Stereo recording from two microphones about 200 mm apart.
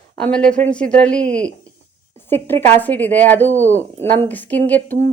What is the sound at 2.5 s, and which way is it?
Speech, 35° right (ahead or behind).